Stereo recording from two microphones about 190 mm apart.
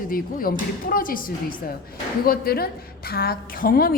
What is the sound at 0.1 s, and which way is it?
A woman's voice, 50° left (ahead or behind).